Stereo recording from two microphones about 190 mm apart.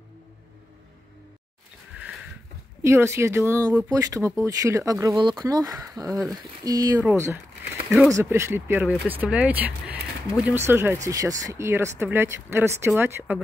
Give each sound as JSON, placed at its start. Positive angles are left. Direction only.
{"t": 2.8, "sound": "speech", "side_deg": -15}